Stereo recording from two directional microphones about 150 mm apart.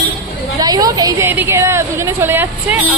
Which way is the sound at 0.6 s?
25° right (ahead or behind).